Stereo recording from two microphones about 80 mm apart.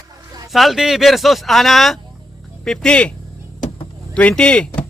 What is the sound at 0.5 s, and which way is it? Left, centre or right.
Speech, centre.